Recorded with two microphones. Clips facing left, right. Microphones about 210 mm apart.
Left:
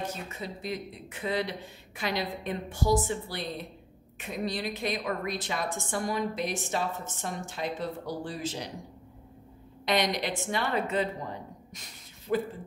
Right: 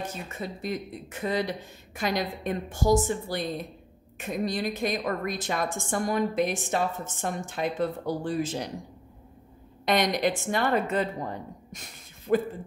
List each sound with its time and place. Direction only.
0.3 s a woman's voice: 50° right (ahead or behind)
9.8 s a woman's voice: 50° right (ahead or behind)
12.3 s a woman's voice: 45° right (ahead or behind)